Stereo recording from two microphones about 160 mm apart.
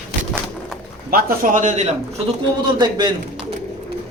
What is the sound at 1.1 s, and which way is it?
A man's voice, 70° right (ahead or behind).